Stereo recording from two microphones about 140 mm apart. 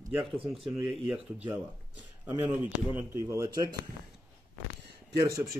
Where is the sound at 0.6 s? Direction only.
Centre (ahead or behind); by 3.7 s 20° right (ahead or behind).